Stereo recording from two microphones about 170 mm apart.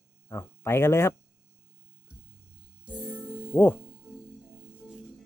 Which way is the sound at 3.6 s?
10° left (ahead or behind).